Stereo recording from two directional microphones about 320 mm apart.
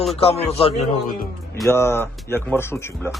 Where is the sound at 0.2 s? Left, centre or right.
Centre.